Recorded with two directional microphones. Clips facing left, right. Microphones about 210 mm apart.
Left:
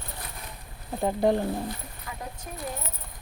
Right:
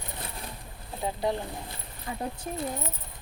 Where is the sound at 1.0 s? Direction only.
50° left (ahead or behind).